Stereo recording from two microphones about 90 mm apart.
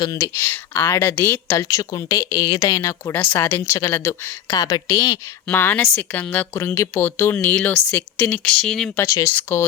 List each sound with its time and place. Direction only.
0.3 s a woman's voice: 25° left (ahead or behind)
4.5 s a woman's voice: 40° left (ahead or behind)
5.5 s speech: 20° left (ahead or behind)
8.4 s speech: 5° left (ahead or behind)
9.3 s speech: 20° left (ahead or behind)